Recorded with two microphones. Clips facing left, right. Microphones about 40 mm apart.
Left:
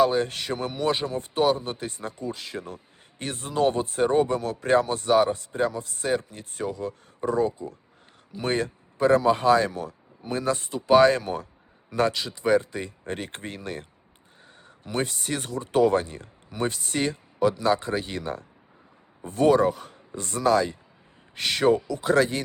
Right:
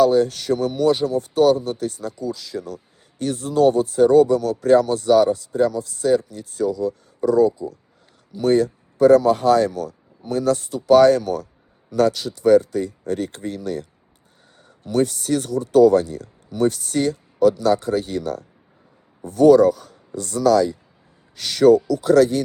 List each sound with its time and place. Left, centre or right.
0.0 s speech: left
14.9 s speech: left
16.7 s a man's voice: left
21.8 s speech: left